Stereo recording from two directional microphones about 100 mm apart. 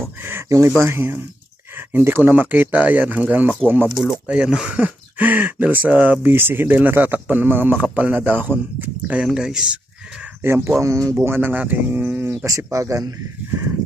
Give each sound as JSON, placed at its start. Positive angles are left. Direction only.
{"t": 0.2, "sound": "a sound", "side_deg": -25}
{"t": 0.8, "sound": "speech", "side_deg": -25}
{"t": 3.8, "sound": "speech", "side_deg": -5}
{"t": 10.4, "sound": "speech", "side_deg": -25}
{"t": 11.2, "sound": "speech", "side_deg": -20}
{"t": 12.5, "sound": "speech", "side_deg": -30}